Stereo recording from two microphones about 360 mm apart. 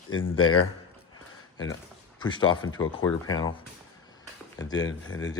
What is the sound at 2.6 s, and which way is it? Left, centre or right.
Speech, left.